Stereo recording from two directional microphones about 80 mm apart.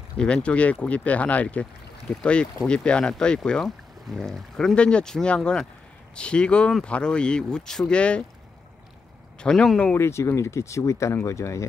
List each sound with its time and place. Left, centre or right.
0.2 s speech: centre
9.4 s speech: centre
9.9 s speech: left